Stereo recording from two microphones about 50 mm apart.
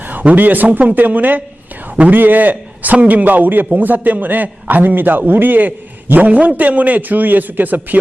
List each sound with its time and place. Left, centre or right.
0.1 s a man's voice: right